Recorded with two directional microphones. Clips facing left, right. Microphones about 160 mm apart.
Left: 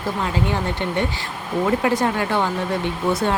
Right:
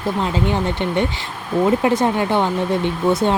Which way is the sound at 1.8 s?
20° right (ahead or behind).